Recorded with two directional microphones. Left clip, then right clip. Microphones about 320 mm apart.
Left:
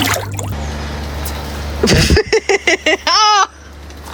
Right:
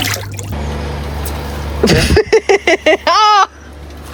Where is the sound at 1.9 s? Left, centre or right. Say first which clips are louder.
Right 2 dB; centre.